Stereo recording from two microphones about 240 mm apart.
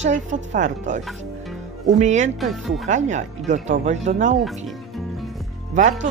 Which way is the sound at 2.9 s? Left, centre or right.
Right.